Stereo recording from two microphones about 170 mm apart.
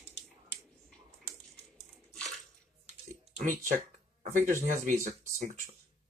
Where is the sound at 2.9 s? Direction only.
45° right (ahead or behind).